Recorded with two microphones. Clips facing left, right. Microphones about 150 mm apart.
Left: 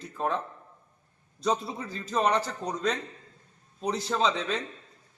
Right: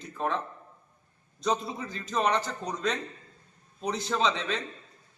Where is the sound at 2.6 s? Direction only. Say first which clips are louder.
Left 2 dB; 40° left (ahead or behind).